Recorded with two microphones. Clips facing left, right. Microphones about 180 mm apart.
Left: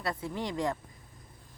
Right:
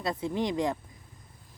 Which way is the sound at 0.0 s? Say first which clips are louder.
Right 5 dB; 20° right (ahead or behind).